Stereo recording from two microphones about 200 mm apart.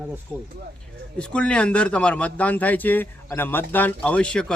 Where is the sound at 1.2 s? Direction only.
5° left (ahead or behind).